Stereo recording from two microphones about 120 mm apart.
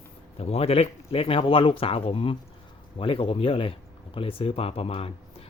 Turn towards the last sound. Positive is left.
turn(degrees=55)  # may be behind; listen again after turning